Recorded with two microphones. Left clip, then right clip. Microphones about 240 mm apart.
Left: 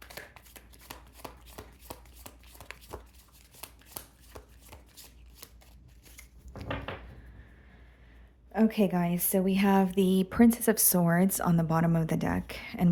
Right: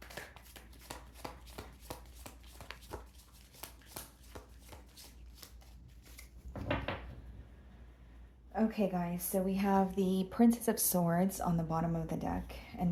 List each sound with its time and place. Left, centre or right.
0.9 s shuffling cards: left
8.5 s a woman's voice: left